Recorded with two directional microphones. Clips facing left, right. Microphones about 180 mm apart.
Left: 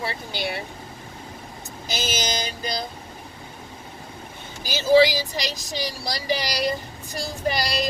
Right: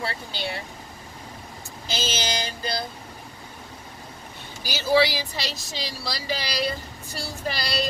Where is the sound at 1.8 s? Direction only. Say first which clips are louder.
Left 1 dB; 10° left (ahead or behind).